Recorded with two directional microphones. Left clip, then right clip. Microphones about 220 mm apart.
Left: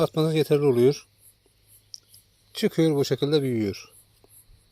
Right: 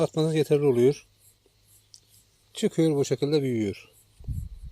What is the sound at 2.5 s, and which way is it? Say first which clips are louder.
Speech: left 2 dB; centre (ahead or behind).